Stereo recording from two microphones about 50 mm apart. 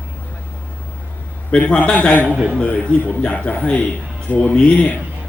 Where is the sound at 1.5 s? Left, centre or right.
Left.